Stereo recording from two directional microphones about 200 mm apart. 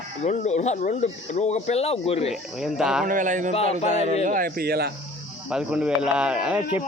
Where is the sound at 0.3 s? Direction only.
35° left (ahead or behind).